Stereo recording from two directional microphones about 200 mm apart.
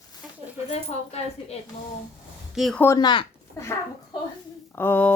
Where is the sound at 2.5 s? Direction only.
Centre (ahead or behind).